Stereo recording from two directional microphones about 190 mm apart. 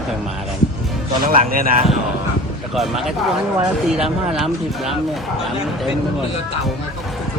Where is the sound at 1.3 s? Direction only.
45° right (ahead or behind).